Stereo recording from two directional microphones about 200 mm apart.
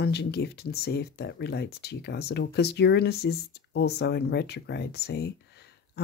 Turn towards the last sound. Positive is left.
turn(degrees=55)  # may be behind; listen again after turning